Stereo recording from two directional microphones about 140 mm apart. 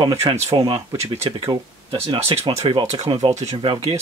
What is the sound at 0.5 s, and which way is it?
Speech, 30° right (ahead or behind).